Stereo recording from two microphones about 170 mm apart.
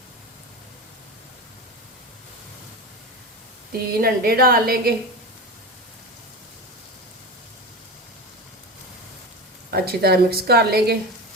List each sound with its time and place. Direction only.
3.7 s a woman's voice: 60° right (ahead or behind)
9.7 s a woman's voice: 65° right (ahead or behind)